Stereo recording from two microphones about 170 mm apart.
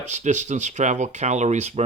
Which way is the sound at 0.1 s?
45° right (ahead or behind).